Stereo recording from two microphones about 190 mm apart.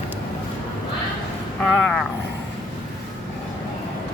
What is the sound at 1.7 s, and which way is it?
Speech, centre (ahead or behind).